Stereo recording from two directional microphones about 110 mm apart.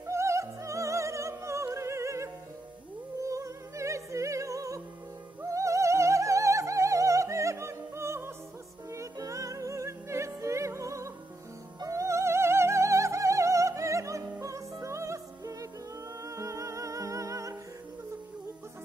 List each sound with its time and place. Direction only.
0.0 s music: 25° right (ahead or behind)
5.4 s opera: 30° right (ahead or behind)
8.9 s music: 30° right (ahead or behind)